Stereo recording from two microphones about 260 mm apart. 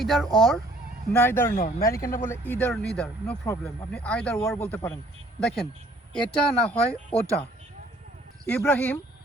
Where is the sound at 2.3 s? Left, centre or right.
Centre.